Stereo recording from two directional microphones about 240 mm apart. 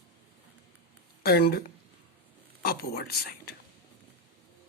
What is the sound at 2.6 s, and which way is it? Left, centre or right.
Speech, left.